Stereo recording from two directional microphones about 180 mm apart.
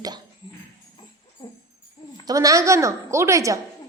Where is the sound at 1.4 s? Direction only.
25° left (ahead or behind).